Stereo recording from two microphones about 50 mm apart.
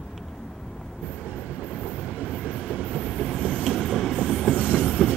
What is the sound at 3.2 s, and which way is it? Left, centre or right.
Train, centre.